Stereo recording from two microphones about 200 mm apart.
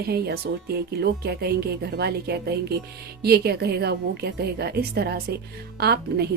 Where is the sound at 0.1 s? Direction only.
50° right (ahead or behind).